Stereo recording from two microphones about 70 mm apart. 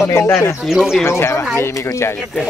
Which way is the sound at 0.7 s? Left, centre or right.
Centre.